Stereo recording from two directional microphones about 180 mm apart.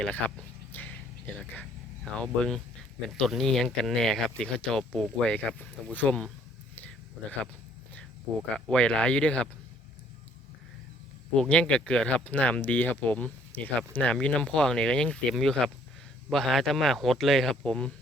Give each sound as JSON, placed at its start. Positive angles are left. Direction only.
{"t": 0.0, "sound": "a sound", "side_deg": 5}
{"t": 2.1, "sound": "speech", "side_deg": 5}
{"t": 6.7, "sound": "a sound", "side_deg": 10}
{"t": 8.4, "sound": "speech", "side_deg": -5}
{"t": 8.7, "sound": "speech", "side_deg": 5}
{"t": 11.3, "sound": "speech", "side_deg": 5}